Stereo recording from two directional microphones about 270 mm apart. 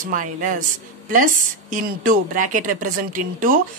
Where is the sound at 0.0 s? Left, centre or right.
Right.